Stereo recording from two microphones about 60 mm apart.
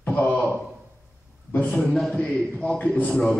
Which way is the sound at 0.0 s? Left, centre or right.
Left.